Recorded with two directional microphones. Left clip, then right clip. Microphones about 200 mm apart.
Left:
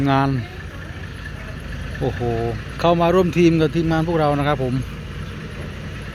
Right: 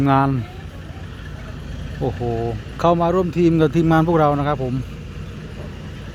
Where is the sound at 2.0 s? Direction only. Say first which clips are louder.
Even; 10° right (ahead or behind).